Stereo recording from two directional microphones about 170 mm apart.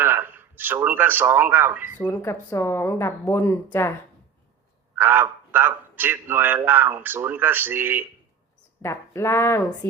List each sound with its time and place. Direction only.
0.0 s speech: 10° right (ahead or behind)
2.0 s speech: 10° left (ahead or behind)
4.9 s a man's voice: 10° right (ahead or behind)
8.8 s speech: 15° left (ahead or behind)